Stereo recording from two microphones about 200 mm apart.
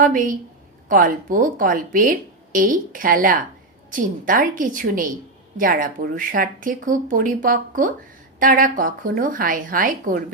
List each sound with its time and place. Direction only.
0.0 s a woman's voice: 40° right (ahead or behind)